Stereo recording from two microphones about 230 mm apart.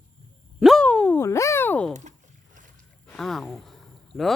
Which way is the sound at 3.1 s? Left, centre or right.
Centre.